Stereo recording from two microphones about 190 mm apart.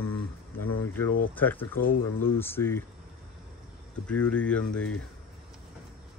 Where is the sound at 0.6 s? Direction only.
10° left (ahead or behind).